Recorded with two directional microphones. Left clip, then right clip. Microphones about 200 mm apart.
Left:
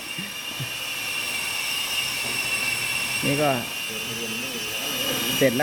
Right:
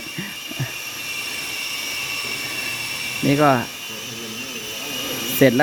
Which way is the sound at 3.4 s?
40° right (ahead or behind).